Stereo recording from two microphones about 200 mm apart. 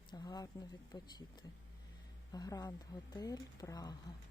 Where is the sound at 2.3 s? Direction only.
20° left (ahead or behind).